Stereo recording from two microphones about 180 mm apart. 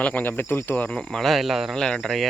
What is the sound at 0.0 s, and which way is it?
Speech, 10° left (ahead or behind).